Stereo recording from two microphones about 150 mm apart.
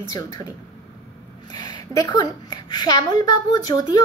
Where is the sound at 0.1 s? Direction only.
25° left (ahead or behind).